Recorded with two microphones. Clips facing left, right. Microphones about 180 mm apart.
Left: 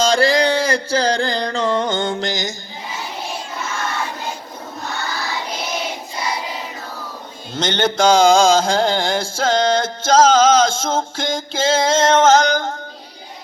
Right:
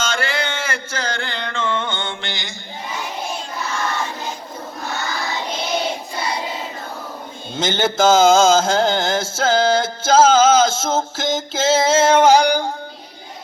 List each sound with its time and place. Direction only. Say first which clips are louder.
0.0 s mantra: left 8 dB; 35° left (ahead or behind)
7.5 s mantra: left 1 dB; 5° right (ahead or behind)